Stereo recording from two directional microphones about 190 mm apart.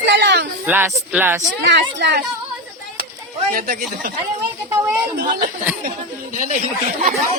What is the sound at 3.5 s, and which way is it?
Speech, 50° right (ahead or behind).